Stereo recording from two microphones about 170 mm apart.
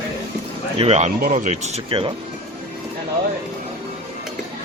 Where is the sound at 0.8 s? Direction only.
40° right (ahead or behind).